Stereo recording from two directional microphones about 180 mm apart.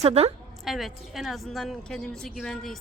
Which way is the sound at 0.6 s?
Centre (ahead or behind).